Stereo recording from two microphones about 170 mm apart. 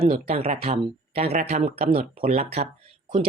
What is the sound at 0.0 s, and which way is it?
Speech, 35° right (ahead or behind).